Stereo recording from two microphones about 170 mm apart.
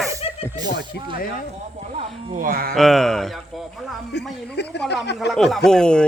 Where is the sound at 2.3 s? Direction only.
55° right (ahead or behind).